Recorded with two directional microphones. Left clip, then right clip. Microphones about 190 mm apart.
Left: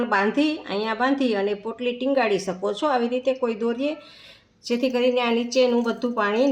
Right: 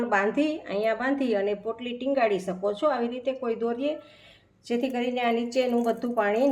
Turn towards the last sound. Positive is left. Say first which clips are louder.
# left 2 dB
turn(degrees=50)  # may be behind; listen again after turning